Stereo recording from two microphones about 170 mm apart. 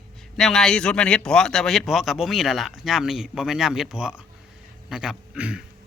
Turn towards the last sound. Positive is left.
turn(degrees=-5)  # may be behind; listen again after turning